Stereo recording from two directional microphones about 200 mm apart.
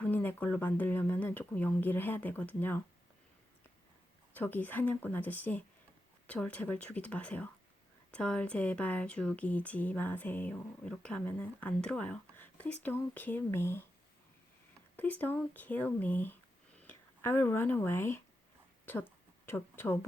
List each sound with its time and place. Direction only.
0.0 s speech: 10° left (ahead or behind)
4.4 s speech: 10° left (ahead or behind)
14.9 s speech: 10° left (ahead or behind)